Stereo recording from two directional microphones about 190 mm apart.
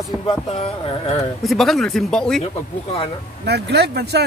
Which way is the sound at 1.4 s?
Centre (ahead or behind).